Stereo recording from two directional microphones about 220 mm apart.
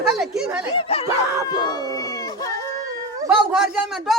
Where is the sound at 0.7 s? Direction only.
25° left (ahead or behind).